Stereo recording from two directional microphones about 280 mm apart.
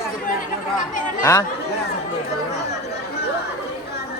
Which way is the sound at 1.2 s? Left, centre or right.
Centre.